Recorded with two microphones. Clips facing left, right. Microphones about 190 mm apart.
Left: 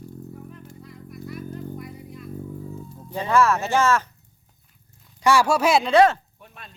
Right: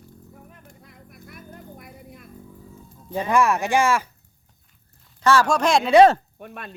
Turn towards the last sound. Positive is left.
turn(degrees=-60)  # may be behind; listen again after turning